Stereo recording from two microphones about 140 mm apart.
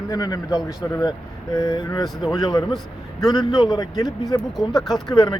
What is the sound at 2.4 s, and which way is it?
Speech, 30° left (ahead or behind).